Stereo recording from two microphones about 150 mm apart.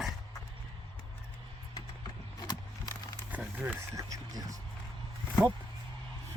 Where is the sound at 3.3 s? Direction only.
10° right (ahead or behind).